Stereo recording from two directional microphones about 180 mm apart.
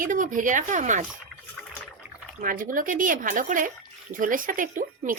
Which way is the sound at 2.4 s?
50° right (ahead or behind).